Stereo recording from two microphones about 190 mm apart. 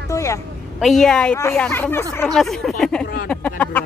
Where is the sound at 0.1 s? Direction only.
15° left (ahead or behind).